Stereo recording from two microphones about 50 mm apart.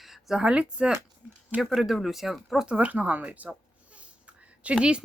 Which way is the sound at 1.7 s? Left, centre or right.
Centre.